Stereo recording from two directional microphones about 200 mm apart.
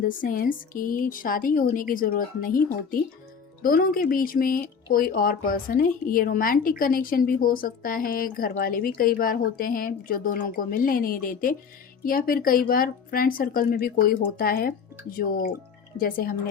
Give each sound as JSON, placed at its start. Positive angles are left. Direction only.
{"t": 0.0, "sound": "speech", "side_deg": 45}
{"t": 16.0, "sound": "speech", "side_deg": 45}